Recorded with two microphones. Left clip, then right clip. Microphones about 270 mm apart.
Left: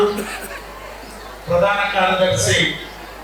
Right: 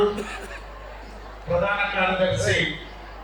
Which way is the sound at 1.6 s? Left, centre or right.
Centre.